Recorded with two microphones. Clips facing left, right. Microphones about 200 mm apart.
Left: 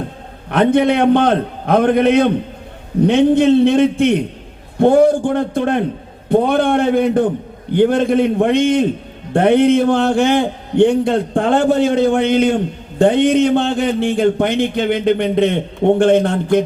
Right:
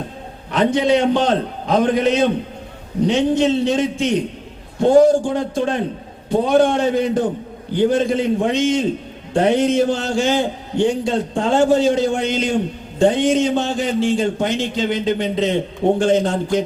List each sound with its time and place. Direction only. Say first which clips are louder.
0.5 s speech: left 3 dB; 60° left (ahead or behind)